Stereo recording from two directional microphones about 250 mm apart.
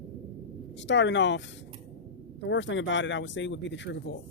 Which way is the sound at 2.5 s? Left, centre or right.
Left.